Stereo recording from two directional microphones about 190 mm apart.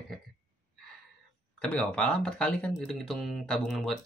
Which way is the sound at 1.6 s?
5° left (ahead or behind).